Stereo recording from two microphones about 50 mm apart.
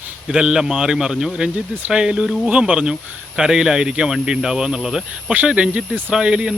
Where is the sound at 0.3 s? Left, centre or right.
Centre.